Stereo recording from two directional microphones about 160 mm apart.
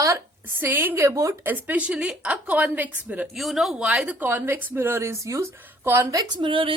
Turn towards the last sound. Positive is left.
turn(degrees=-35)  # may be behind; listen again after turning